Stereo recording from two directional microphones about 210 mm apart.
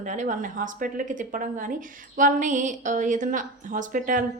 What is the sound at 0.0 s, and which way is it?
A woman's voice, 35° right (ahead or behind).